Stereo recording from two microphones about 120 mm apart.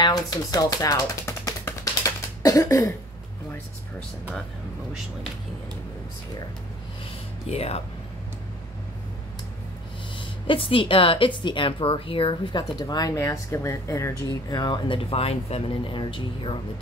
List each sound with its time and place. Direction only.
0.0 s typewriter: 35° left (ahead or behind)
7.4 s speech: 55° left (ahead or behind)
10.1 s a woman's voice: 45° left (ahead or behind); by 14.1 s 25° left (ahead or behind)
14.5 s speech: 40° left (ahead or behind)
15.0 s a woman's voice: 55° left (ahead or behind)